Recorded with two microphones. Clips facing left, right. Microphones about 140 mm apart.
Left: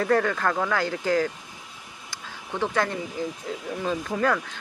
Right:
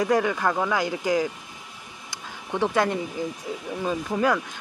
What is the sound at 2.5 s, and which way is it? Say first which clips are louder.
Speech: right 3 dB; 20° right (ahead or behind).